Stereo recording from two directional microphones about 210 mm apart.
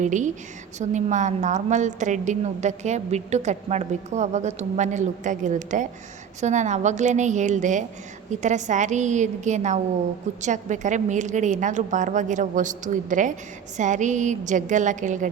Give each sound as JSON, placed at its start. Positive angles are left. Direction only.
{"t": 0.0, "sound": "a woman's voice", "side_deg": -35}